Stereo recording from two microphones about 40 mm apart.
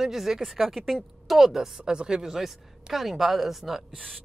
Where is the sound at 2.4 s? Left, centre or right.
Centre.